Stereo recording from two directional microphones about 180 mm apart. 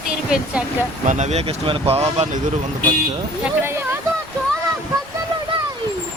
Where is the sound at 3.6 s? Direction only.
15° right (ahead or behind).